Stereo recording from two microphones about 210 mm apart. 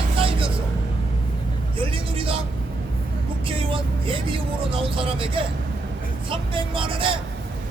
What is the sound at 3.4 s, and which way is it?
Vehicle, 25° right (ahead or behind).